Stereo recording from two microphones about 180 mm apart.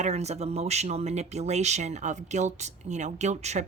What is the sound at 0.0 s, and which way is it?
Speech, 40° right (ahead or behind).